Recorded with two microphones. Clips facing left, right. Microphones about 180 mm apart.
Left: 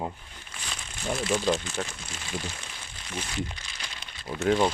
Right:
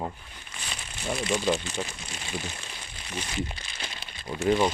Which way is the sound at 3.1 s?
10° right (ahead or behind).